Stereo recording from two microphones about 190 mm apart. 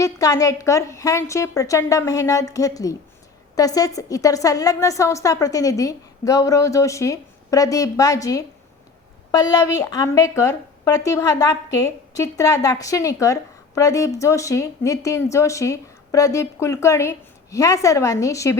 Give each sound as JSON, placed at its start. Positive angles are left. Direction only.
{"t": 0.0, "sound": "a woman's voice", "side_deg": 15}